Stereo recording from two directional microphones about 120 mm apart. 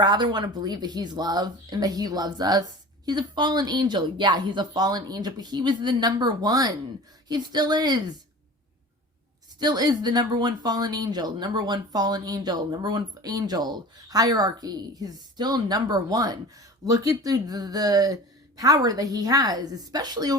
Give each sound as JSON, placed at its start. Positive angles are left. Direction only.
{"t": 0.0, "sound": "speech", "side_deg": -35}
{"t": 9.6, "sound": "speech", "side_deg": -35}